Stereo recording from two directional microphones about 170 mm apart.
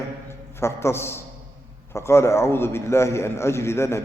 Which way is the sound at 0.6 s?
15° left (ahead or behind).